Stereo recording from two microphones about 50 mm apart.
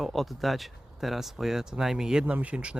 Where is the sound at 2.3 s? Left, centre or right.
Right.